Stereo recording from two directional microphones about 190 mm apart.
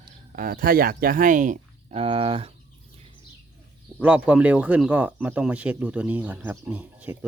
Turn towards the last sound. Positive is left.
turn(degrees=-10)  # may be behind; listen again after turning